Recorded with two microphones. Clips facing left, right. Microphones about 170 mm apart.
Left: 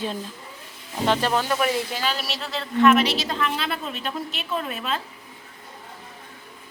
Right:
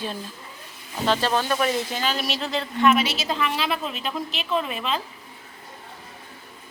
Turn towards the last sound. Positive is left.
turn(degrees=0)  # may be behind; listen again after turning